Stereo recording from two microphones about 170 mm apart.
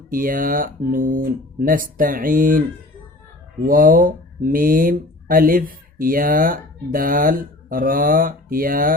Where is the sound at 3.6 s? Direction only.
55° right (ahead or behind).